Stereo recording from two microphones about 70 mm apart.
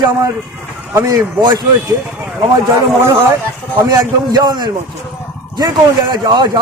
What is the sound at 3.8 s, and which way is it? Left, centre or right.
A man's voice, right.